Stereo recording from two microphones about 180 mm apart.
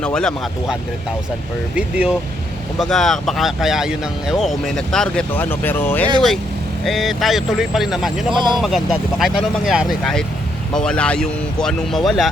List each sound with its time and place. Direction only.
0.0 s speech: 5° left (ahead or behind)
8.3 s speech: 25° right (ahead or behind)
8.6 s speech: centre (ahead or behind)